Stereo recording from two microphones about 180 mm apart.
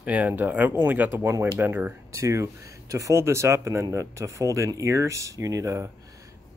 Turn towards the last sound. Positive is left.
turn(degrees=-20)  # may be behind; listen again after turning